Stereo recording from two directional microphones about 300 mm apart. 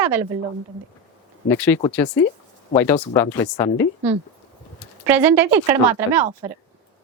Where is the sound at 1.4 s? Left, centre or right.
Centre.